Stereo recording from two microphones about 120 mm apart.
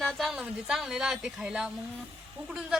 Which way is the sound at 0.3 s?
5° right (ahead or behind).